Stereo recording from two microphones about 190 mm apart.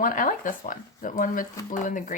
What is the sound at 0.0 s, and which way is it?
Speech, 45° left (ahead or behind).